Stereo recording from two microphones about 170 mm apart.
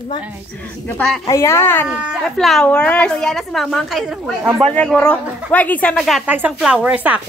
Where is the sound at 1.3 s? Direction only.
15° left (ahead or behind).